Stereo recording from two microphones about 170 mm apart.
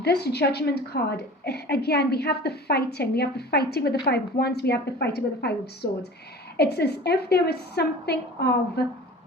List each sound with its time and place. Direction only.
0.0 s a woman's voice: 70° left (ahead or behind)